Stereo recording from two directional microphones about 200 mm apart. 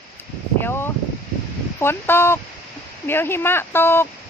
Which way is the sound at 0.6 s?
10° left (ahead or behind).